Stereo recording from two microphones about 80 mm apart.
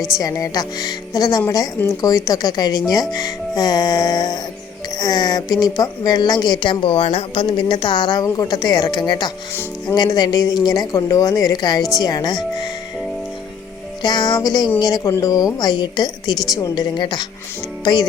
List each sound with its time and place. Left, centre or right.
0.2 s a woman's voice: left
7.3 s speech: left
14.0 s a woman's voice: left
15.5 s speech: left
17.0 s speech: left